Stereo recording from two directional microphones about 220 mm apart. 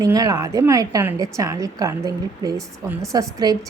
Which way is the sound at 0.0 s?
15° right (ahead or behind).